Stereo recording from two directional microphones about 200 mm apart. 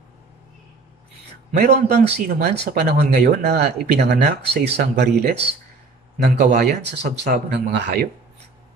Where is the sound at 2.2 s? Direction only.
55° right (ahead or behind).